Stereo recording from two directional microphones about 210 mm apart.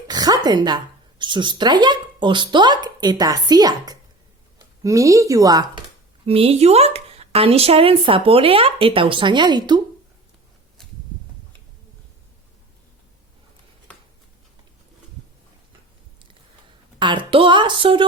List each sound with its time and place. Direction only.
0.1 s speech: 20° right (ahead or behind)
17.0 s speech: 20° right (ahead or behind)